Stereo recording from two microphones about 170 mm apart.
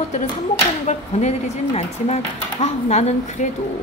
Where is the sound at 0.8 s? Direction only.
40° left (ahead or behind).